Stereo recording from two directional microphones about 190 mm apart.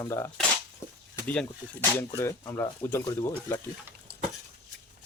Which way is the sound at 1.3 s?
10° left (ahead or behind).